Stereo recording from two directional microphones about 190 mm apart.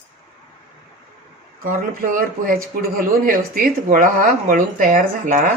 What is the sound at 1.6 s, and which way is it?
Speech, 45° right (ahead or behind).